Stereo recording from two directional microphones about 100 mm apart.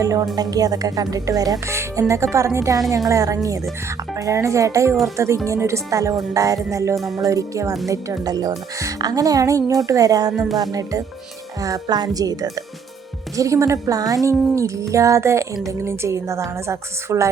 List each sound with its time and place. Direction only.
0.0 s a woman's voice: 35° right (ahead or behind)
10.3 s music: 5° right (ahead or behind)
10.6 s a woman's voice: 40° right (ahead or behind)